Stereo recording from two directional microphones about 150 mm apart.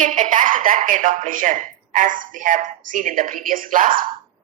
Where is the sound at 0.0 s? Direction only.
60° right (ahead or behind).